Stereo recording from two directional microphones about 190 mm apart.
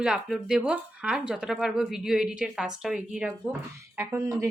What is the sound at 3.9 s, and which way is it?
Speech, 15° right (ahead or behind).